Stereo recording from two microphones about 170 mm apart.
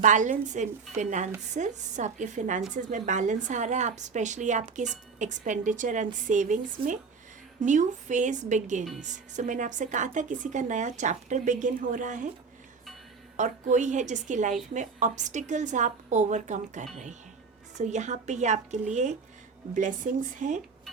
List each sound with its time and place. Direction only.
0.0 s speech: 45° right (ahead or behind)
13.3 s speech: 45° right (ahead or behind)